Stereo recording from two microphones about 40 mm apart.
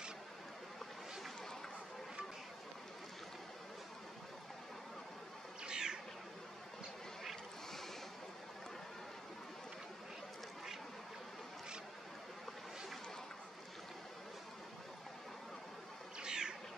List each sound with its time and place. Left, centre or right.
5.6 s cat: right
16.2 s cat: right